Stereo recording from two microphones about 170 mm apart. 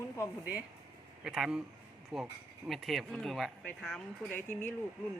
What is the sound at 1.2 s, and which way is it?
Speech, 5° right (ahead or behind).